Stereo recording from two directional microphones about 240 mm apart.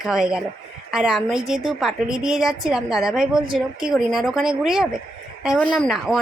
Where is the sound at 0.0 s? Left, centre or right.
Centre.